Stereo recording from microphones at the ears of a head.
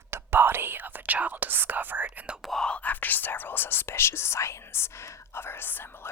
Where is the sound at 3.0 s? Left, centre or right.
Left.